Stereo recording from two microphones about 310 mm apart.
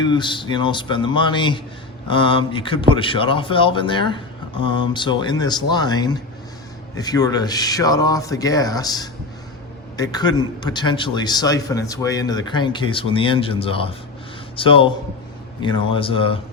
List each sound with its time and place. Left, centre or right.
0.0 s a man's voice: centre